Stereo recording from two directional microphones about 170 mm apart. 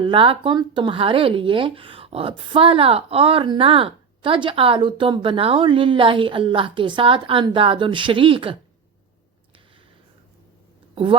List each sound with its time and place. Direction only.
0.0 s speech: 30° right (ahead or behind)
10.9 s speech: 30° right (ahead or behind)